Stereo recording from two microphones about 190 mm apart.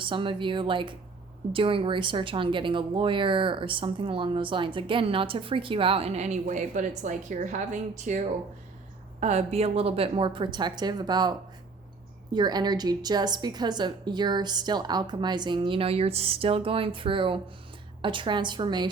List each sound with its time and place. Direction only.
0.0 s a woman's voice: 25° right (ahead or behind)